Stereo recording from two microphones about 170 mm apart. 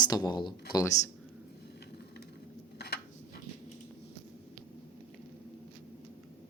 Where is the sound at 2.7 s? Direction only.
75° left (ahead or behind).